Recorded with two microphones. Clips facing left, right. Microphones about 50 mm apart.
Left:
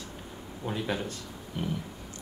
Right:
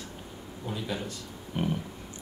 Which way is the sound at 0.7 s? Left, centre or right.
Left.